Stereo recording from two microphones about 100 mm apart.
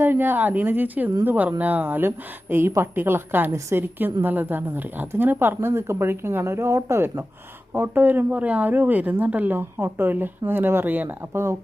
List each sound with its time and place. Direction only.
0.0 s a woman's voice: 20° right (ahead or behind)